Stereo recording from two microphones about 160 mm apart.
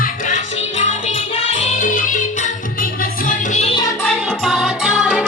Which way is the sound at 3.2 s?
45° left (ahead or behind).